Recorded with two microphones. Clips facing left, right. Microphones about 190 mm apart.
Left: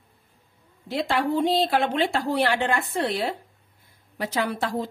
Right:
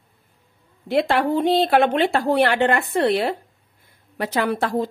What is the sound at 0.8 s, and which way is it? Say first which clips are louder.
A woman's voice: right 5 dB; 65° right (ahead or behind).